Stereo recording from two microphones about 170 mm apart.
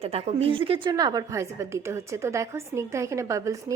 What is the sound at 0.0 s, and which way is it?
A woman's voice, 35° right (ahead or behind).